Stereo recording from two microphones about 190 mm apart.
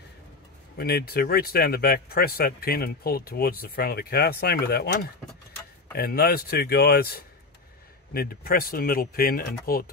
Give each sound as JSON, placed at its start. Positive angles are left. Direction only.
{"t": 0.7, "sound": "speech", "side_deg": 55}
{"t": 5.9, "sound": "speech", "side_deg": 55}